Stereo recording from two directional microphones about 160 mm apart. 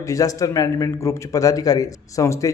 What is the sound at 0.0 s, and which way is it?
A man's voice, 20° left (ahead or behind).